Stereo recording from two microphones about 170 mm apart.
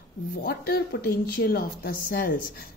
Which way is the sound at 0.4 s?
65° left (ahead or behind).